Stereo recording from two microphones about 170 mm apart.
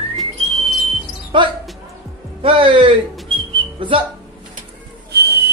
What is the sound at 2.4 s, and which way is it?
Music, 30° right (ahead or behind).